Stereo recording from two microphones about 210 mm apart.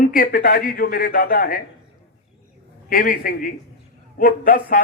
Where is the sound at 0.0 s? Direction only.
40° left (ahead or behind).